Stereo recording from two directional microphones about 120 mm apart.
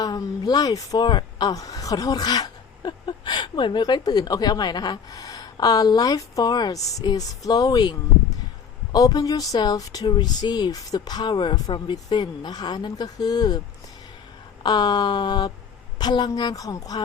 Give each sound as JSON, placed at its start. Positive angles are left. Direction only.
{"t": 0.0, "sound": "speech", "side_deg": 35}
{"t": 14.6, "sound": "speech", "side_deg": 35}